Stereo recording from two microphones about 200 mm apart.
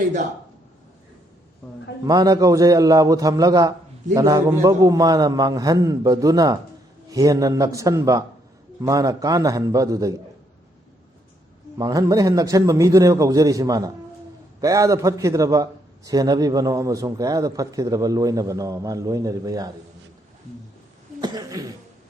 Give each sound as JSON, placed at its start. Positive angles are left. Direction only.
{"t": 2.0, "sound": "a man's voice", "side_deg": -20}
{"t": 11.8, "sound": "a man's voice", "side_deg": -15}
{"t": 21.2, "sound": "cough", "side_deg": -20}